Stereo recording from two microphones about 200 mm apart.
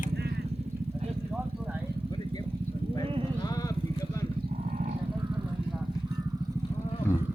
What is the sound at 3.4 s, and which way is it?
Vehicle, 20° left (ahead or behind).